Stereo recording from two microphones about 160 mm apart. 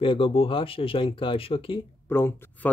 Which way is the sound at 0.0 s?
35° left (ahead or behind).